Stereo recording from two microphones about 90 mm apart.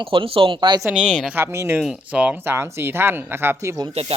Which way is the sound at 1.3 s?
25° right (ahead or behind).